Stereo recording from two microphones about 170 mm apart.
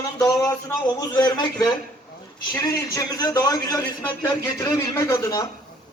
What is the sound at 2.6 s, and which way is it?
Speech, 20° left (ahead or behind).